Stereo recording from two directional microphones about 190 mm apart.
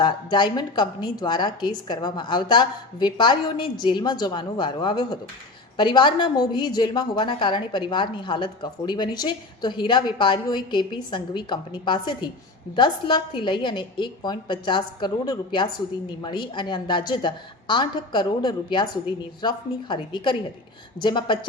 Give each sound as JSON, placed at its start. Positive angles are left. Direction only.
{"t": 0.0, "sound": "a woman's voice", "side_deg": 25}